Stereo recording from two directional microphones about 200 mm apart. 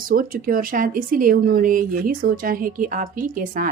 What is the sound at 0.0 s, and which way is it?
Speech, 45° right (ahead or behind).